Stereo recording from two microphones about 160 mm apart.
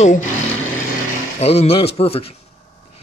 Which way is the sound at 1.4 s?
40° left (ahead or behind).